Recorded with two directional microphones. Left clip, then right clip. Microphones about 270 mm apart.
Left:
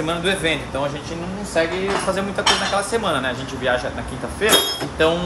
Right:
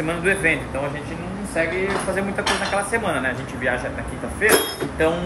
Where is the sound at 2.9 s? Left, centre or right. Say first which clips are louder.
Left 1 dB; centre.